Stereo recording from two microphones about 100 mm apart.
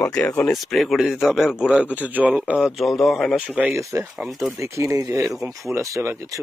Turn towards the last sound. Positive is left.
turn(degrees=-30)  # may be behind; listen again after turning